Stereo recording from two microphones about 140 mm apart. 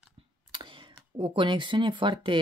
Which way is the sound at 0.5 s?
35° right (ahead or behind).